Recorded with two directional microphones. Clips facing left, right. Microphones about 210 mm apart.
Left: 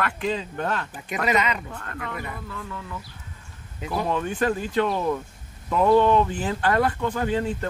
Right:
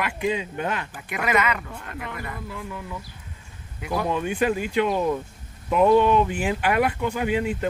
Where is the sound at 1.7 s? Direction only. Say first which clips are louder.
Left 1 dB; 15° right (ahead or behind).